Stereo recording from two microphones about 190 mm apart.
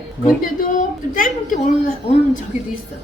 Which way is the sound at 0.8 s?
45° left (ahead or behind).